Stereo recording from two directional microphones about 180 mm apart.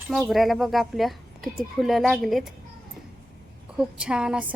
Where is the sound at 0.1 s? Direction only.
Centre (ahead or behind).